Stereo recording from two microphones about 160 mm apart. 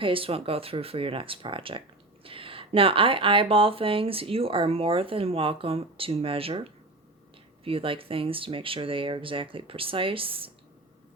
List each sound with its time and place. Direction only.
0.0 s speech: 35° right (ahead or behind)